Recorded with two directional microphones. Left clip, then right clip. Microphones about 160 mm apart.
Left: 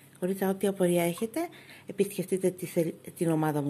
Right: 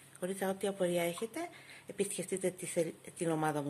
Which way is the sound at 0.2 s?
25° left (ahead or behind).